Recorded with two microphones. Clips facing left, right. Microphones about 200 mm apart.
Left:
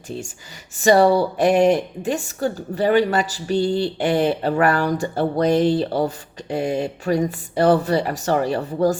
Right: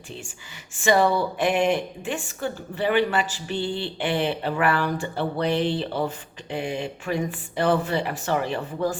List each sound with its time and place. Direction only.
0.8 s a woman's voice: 40° left (ahead or behind)